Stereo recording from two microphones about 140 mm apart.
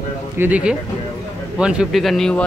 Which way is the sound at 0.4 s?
10° right (ahead or behind).